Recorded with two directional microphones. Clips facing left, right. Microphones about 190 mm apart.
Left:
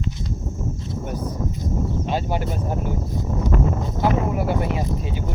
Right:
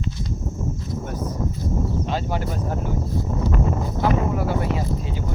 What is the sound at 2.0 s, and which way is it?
Speech, 15° left (ahead or behind).